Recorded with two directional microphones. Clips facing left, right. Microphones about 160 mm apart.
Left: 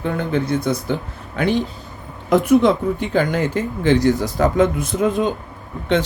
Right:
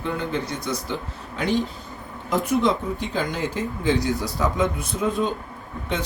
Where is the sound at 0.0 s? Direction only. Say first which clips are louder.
Left 5 dB; 55° left (ahead or behind).